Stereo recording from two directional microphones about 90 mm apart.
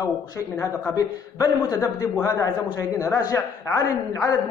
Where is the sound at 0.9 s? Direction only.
40° left (ahead or behind).